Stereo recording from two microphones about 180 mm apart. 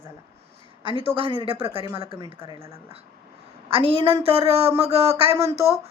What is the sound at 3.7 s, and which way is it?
A woman's voice, 30° right (ahead or behind).